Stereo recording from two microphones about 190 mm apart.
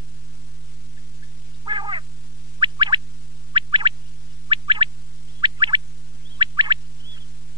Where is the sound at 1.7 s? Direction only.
25° right (ahead or behind).